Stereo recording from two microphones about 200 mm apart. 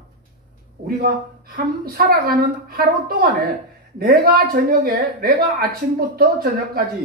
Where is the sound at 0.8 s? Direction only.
50° right (ahead or behind).